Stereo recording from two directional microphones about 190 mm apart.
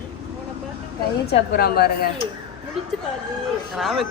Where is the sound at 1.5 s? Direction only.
55° left (ahead or behind).